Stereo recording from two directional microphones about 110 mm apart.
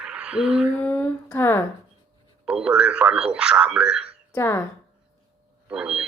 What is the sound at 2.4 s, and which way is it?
Speech, 10° right (ahead or behind).